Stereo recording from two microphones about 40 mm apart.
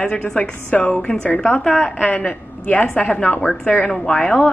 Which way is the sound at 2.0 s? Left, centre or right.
Left.